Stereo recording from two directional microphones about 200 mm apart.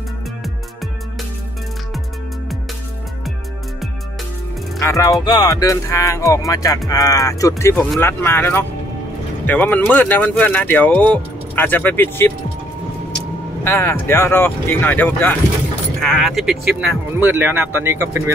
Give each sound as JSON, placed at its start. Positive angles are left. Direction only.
{"t": 4.7, "sound": "music", "side_deg": 15}
{"t": 5.2, "sound": "speech", "side_deg": 20}
{"t": 13.7, "sound": "speech", "side_deg": 10}